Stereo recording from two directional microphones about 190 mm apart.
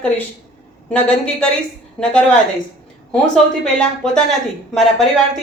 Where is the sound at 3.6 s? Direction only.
5° left (ahead or behind).